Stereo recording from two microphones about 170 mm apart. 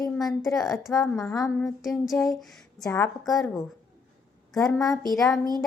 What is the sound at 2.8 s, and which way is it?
Speech, 20° left (ahead or behind).